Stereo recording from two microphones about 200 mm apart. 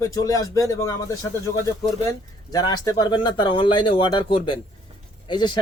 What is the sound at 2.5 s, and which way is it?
Speech, 20° left (ahead or behind).